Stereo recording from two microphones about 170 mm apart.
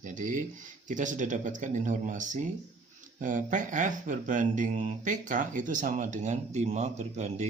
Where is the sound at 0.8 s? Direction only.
50° right (ahead or behind).